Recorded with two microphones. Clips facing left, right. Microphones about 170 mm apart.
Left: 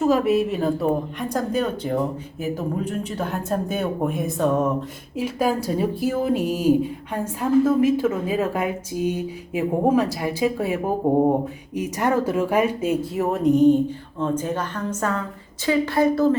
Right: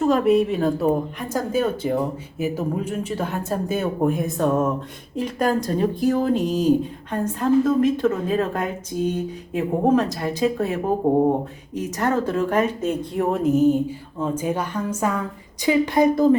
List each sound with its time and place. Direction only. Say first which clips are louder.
0.0 s a woman's voice: right 1 dB; centre (ahead or behind); by 16.4 s 15° right (ahead or behind)